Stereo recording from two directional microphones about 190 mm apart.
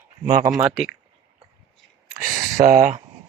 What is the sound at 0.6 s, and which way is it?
Speech, 5° right (ahead or behind).